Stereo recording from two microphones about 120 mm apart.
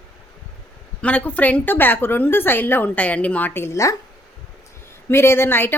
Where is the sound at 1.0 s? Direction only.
15° left (ahead or behind).